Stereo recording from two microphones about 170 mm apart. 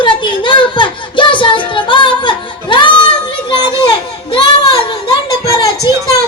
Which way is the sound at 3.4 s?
25° left (ahead or behind).